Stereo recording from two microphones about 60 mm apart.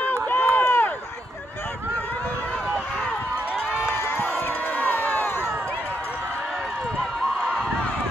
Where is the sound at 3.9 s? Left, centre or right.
Left.